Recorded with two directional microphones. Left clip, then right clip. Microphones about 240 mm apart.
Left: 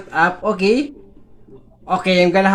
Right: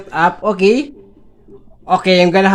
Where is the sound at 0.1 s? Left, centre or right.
Right.